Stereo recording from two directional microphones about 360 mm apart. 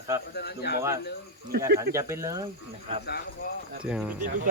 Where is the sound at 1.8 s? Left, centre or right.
Centre.